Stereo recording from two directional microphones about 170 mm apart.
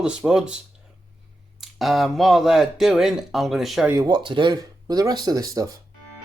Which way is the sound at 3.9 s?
20° right (ahead or behind).